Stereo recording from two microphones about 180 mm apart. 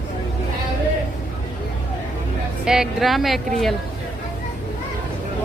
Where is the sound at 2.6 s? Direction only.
5° right (ahead or behind).